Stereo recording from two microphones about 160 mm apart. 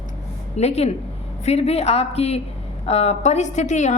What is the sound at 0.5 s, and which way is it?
A woman's voice, 40° left (ahead or behind).